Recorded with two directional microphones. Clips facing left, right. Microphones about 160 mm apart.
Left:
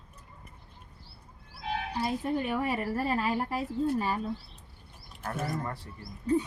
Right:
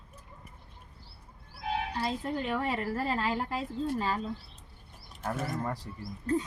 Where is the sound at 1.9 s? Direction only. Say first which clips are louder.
Left 2 dB; 10° left (ahead or behind).